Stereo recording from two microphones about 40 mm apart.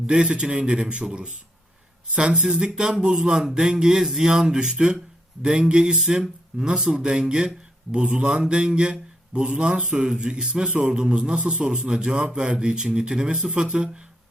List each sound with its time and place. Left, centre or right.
0.1 s mantra: right
2.4 s speech: centre
5.4 s mantra: right
6.7 s speech: centre
7.0 s mantra: right
7.9 s speech: right
8.4 s mantra: right
10.7 s speech: right
10.9 s mantra: centre
13.3 s speech: centre
13.6 s mantra: right